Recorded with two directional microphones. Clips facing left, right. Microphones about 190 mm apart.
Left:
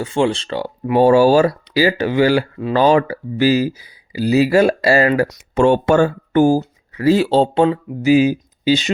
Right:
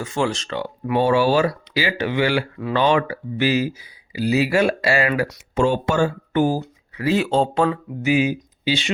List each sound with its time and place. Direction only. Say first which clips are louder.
0.0 s speech: left 5 dB; 30° left (ahead or behind)
5.5 s speech: left 6 dB; 65° left (ahead or behind); by 8.9 s 40° left (ahead or behind)